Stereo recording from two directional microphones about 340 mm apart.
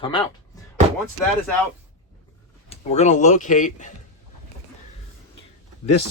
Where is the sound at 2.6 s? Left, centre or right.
Centre.